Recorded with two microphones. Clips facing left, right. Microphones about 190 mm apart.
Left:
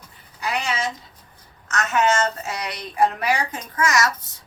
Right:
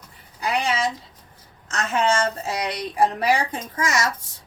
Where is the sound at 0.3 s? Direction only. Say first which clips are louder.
Right 2 dB; 35° right (ahead or behind).